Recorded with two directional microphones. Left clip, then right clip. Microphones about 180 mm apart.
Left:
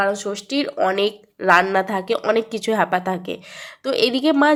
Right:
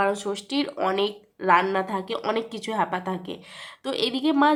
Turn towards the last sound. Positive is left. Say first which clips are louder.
# left 5 dB
turn(degrees=20)  # may be behind; listen again after turning